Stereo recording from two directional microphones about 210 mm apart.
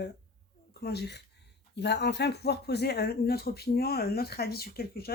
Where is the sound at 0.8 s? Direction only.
50° left (ahead or behind).